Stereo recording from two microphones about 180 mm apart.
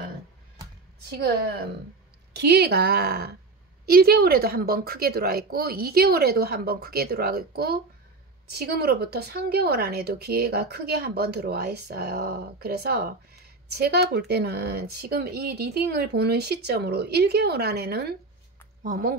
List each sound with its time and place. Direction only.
1.1 s a woman's voice: 60° right (ahead or behind)
18.8 s a woman's voice: 50° right (ahead or behind)